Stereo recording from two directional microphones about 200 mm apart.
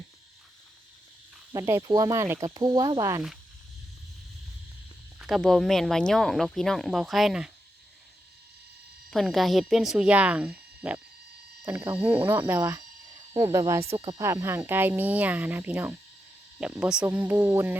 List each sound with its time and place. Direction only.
1.5 s speech: 15° right (ahead or behind)
5.2 s speech: centre (ahead or behind)
9.0 s speech: centre (ahead or behind)
13.9 s speech: 30° right (ahead or behind)
14.2 s speech: 15° right (ahead or behind)